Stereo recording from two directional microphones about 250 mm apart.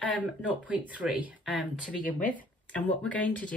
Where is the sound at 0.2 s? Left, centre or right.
Centre.